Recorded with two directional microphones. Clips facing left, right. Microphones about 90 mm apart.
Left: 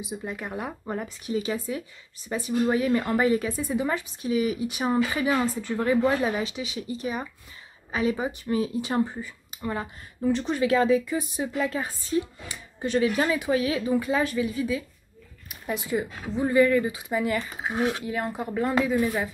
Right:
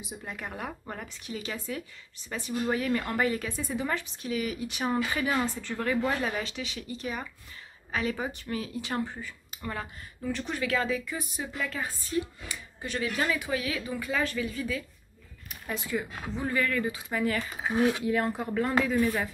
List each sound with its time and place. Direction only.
0.2 s speech: 10° left (ahead or behind)
3.5 s a woman's voice: 5° left (ahead or behind)
5.8 s speech: 25° left (ahead or behind)
6.0 s speech: 10° left (ahead or behind)